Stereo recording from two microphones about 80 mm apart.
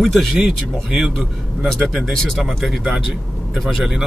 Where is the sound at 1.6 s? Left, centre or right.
Centre.